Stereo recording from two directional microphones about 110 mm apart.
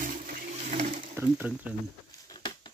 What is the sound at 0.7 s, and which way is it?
Pigeon, 85° right.